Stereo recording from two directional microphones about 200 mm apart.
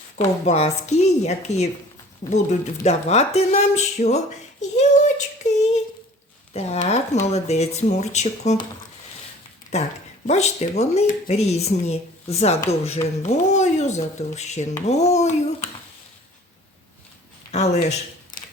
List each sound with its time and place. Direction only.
0.2 s speech: 30° left (ahead or behind)
4.6 s child singing: 35° left (ahead or behind)
6.5 s speech: 30° left (ahead or behind)
9.7 s speech: 35° left (ahead or behind)